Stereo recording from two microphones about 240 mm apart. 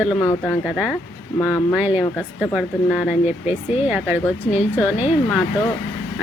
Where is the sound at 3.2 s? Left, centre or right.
Left.